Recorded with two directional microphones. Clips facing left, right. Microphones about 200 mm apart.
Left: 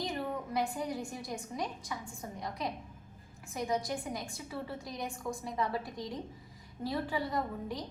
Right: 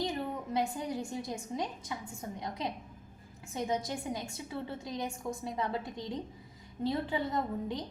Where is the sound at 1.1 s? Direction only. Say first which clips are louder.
Right 3 dB; 25° right (ahead or behind).